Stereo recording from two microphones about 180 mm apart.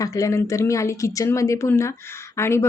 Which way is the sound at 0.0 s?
20° left (ahead or behind).